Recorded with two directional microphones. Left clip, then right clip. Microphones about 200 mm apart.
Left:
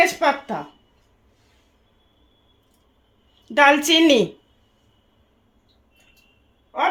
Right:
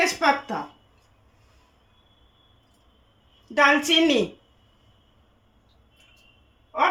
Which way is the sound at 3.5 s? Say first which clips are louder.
Left 4 dB; 55° left (ahead or behind).